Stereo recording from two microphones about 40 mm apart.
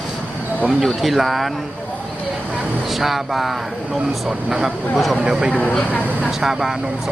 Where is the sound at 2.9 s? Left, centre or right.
Centre.